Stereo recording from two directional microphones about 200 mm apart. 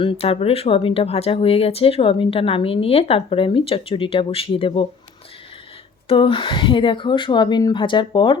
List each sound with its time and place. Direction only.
0.0 s speech: 25° left (ahead or behind)
6.1 s speech: 25° left (ahead or behind)